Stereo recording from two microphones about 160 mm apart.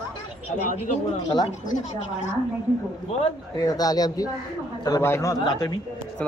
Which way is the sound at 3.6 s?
25° left (ahead or behind).